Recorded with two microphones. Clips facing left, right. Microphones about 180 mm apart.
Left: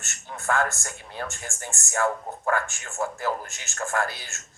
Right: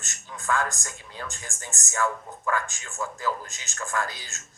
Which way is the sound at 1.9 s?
40° left (ahead or behind).